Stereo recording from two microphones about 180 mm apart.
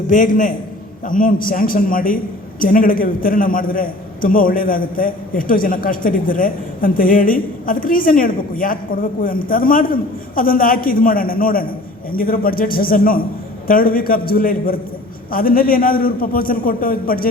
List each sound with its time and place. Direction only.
0.1 s a man's voice: 50° left (ahead or behind)